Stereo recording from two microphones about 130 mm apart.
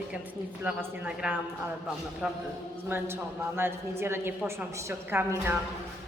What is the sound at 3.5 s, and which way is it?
A woman's voice, 15° right (ahead or behind).